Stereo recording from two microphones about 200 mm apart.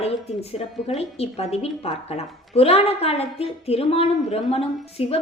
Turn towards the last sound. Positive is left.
turn(degrees=30)  # may be behind; listen again after turning